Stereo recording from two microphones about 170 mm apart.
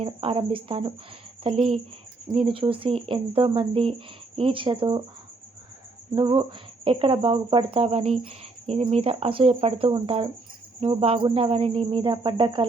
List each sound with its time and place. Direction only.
0.0 s speech: 35° right (ahead or behind)
6.1 s speech: 30° right (ahead or behind)